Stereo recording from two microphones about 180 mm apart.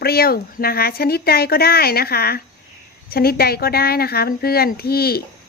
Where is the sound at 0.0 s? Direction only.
60° left (ahead or behind).